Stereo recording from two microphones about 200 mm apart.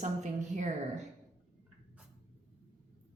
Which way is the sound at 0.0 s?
35° right (ahead or behind).